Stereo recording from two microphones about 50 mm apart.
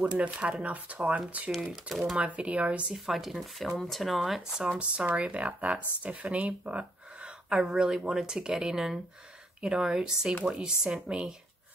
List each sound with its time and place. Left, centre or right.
0.0 s speech: right
1.7 s speech: centre
2.1 s speech: right
2.9 s speech: centre
4.7 s speech: right
7.2 s speech: centre